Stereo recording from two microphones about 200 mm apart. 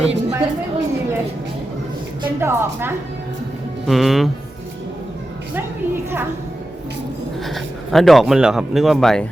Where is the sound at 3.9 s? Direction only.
Centre (ahead or behind).